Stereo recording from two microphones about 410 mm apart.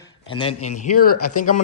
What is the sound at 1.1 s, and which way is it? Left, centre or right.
Speech, left.